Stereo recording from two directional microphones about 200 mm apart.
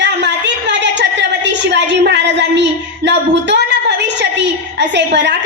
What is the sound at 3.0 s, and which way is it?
A woman's voice, 60° right (ahead or behind).